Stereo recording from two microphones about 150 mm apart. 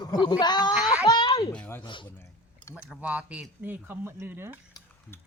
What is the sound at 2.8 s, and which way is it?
Speech, 5° right (ahead or behind).